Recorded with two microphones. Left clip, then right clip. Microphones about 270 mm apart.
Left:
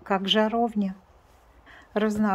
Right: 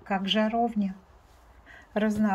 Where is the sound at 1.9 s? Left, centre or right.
Centre.